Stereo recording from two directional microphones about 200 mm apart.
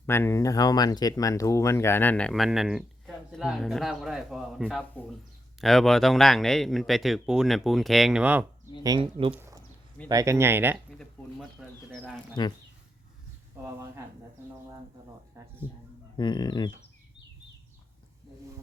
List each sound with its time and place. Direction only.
0.0 s speech: 10° left (ahead or behind); by 8.4 s 5° right (ahead or behind)
8.8 s speech: 20° right (ahead or behind)
9.3 s speech: 10° right (ahead or behind)
11.6 s speech: centre (ahead or behind)
15.4 s speech: 15° right (ahead or behind)
16.1 s speech: 20° left (ahead or behind)